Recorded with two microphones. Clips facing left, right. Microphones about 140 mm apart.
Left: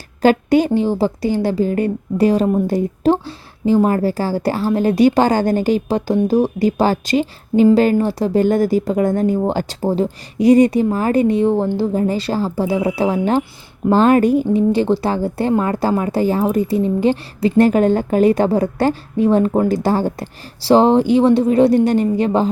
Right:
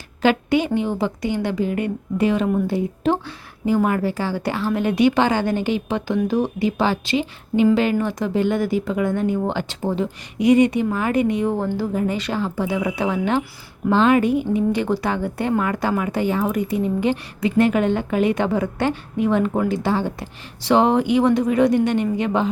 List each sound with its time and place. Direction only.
0.2 s speech: 40° left (ahead or behind)